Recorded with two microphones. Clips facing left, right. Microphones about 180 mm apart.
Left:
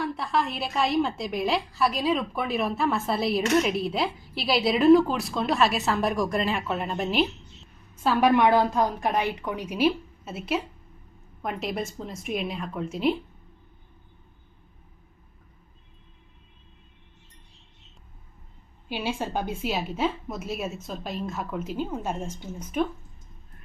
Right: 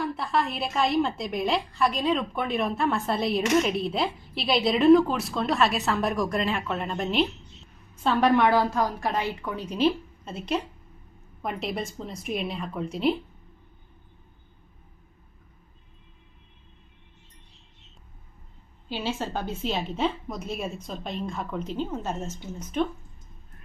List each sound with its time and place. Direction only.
0.0 s a woman's voice: centre (ahead or behind)
8.3 s a woman's voice: 15° left (ahead or behind); by 13.1 s centre (ahead or behind)
18.9 s a woman's voice: 15° left (ahead or behind)